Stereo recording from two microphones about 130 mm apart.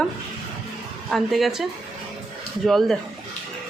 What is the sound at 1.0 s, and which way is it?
Speech, centre (ahead or behind).